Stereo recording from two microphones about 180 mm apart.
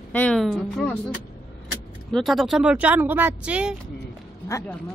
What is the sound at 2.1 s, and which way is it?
Speech, centre (ahead or behind).